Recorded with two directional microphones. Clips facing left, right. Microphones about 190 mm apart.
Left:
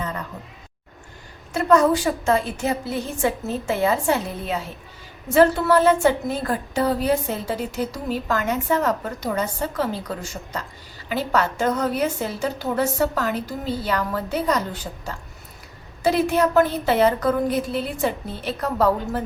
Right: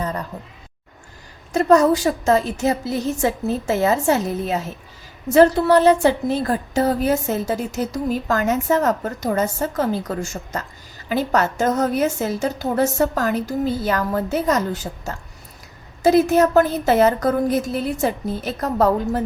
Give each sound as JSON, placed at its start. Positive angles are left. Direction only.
{"t": 1.5, "sound": "a woman's voice", "side_deg": -40}